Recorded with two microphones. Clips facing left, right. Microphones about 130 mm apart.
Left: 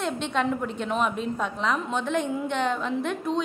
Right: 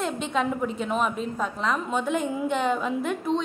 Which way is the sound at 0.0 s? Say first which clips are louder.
Even; centre (ahead or behind).